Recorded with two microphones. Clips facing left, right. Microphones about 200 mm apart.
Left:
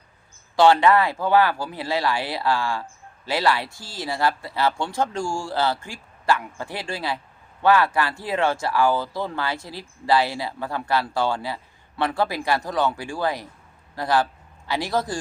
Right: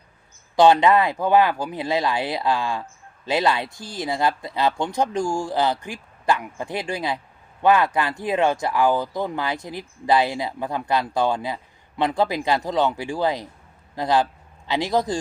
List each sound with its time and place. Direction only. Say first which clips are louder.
0.5 s speech: right 1 dB; 20° right (ahead or behind)